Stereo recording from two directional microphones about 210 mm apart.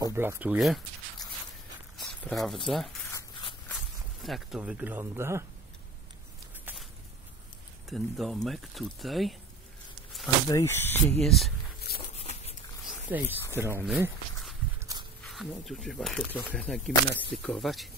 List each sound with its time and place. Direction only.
0.0 s speech: 10° right (ahead or behind)
3.1 s a sound: 15° left (ahead or behind)
3.6 s speech: centre (ahead or behind)
7.9 s speech: centre (ahead or behind)
10.2 s speech: 15° left (ahead or behind)
12.0 s a sound: 30° left (ahead or behind)
13.5 s walk: 10° right (ahead or behind)
15.2 s speech: centre (ahead or behind)